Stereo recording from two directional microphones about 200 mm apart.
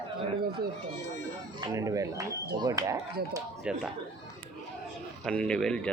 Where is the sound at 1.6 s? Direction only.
15° right (ahead or behind).